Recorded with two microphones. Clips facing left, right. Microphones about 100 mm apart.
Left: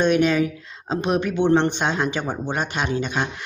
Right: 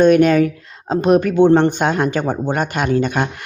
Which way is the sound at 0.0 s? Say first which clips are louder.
Right 7 dB; 50° right (ahead or behind).